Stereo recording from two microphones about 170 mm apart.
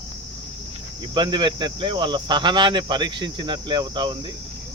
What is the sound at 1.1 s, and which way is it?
Speech, 30° right (ahead or behind).